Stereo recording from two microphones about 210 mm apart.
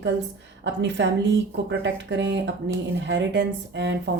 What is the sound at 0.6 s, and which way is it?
Speech, 60° right (ahead or behind).